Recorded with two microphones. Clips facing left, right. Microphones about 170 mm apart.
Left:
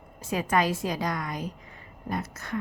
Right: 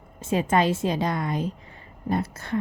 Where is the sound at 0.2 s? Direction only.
25° right (ahead or behind).